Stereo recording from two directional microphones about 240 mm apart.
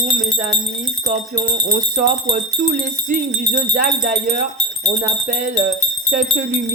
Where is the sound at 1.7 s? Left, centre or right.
Right.